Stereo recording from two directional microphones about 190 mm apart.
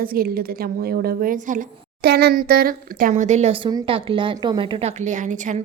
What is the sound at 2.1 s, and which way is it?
A woman's voice, 55° right (ahead or behind).